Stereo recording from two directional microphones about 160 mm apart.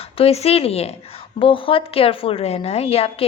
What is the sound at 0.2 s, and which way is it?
A woman's voice, 40° left (ahead or behind).